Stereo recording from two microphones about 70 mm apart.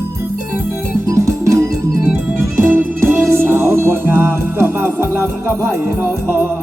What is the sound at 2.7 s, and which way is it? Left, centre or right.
Music, right.